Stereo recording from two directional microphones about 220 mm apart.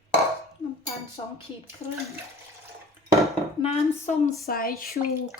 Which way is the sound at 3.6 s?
30° left (ahead or behind).